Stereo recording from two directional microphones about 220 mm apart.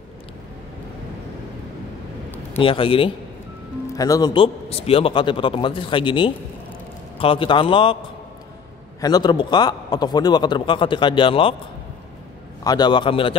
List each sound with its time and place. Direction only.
2.6 s a man's voice: 25° left (ahead or behind)
9.0 s a man's voice: 20° left (ahead or behind)
12.6 s a man's voice: 20° left (ahead or behind)